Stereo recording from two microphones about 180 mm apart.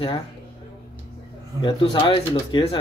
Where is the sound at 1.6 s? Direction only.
25° left (ahead or behind).